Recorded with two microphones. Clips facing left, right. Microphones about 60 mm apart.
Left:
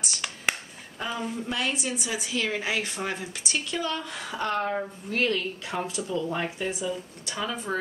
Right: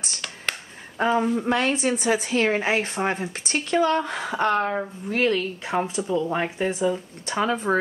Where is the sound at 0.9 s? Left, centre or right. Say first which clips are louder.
Right 10 dB; right.